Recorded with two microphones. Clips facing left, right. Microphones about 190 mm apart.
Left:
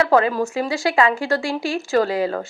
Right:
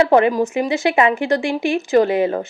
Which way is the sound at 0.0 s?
20° right (ahead or behind).